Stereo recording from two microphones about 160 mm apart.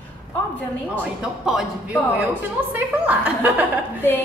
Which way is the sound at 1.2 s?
5° right (ahead or behind).